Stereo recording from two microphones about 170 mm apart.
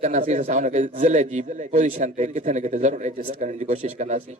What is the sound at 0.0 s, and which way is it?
A man's voice, 45° right (ahead or behind).